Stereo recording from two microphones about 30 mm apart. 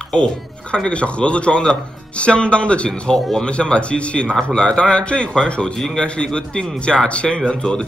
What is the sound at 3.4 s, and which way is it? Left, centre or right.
Speech, left.